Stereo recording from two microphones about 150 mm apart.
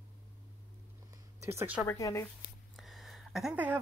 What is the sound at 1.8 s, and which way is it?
Speech, 20° left (ahead or behind).